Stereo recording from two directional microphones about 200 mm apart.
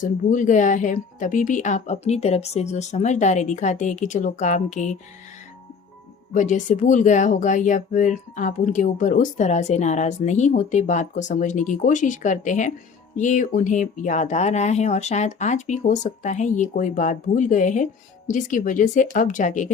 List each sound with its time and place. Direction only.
0.0 s speech: 40° left (ahead or behind)
6.3 s speech: 40° left (ahead or behind)